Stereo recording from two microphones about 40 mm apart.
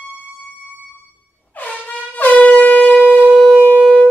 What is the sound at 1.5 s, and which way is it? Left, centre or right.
Air horn, left.